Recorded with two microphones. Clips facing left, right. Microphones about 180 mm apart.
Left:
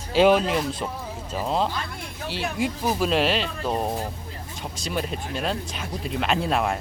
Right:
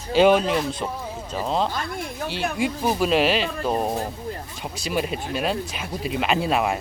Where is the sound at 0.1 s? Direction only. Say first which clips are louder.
Right 1 dB; centre (ahead or behind).